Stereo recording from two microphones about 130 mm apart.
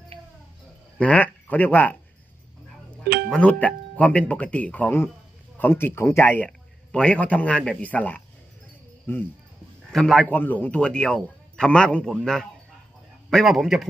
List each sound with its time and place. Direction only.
0.9 s speech: 10° left (ahead or behind)
3.3 s a man's voice: 10° left (ahead or behind)
9.9 s a man's voice: centre (ahead or behind)
10.3 s a man's voice: 15° left (ahead or behind); by 13.8 s centre (ahead or behind)